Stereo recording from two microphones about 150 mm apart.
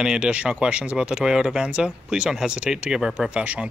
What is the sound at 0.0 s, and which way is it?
Speech, 5° right (ahead or behind).